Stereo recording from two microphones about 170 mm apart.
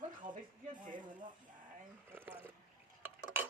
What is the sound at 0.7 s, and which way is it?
Speech, 50° right (ahead or behind).